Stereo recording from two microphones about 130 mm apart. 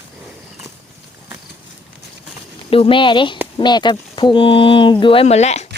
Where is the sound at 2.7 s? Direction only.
45° left (ahead or behind).